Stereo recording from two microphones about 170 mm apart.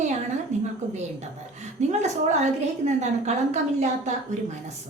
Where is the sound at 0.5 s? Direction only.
45° right (ahead or behind).